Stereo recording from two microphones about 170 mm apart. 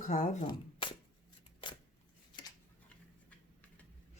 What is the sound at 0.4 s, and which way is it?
Shuffling cards, 30° left (ahead or behind).